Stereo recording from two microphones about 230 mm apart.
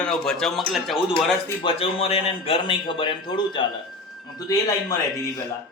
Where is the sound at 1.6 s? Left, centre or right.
Left.